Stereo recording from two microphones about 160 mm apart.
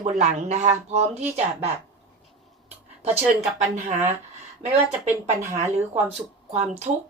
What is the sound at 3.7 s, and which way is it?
Speech, 45° right (ahead or behind).